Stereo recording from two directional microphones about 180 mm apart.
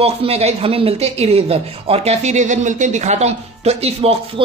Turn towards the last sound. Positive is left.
turn(degrees=-35)  # may be behind; listen again after turning